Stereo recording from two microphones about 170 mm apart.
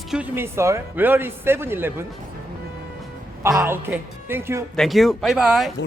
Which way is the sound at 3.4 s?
15° right (ahead or behind).